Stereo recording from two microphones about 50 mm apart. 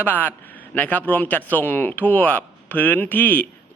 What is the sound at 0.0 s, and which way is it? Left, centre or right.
A man's voice, left.